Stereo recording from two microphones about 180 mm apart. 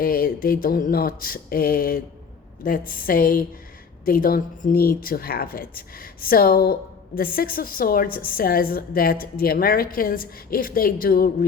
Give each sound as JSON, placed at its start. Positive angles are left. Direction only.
{"t": 0.0, "sound": "a woman's voice", "side_deg": 55}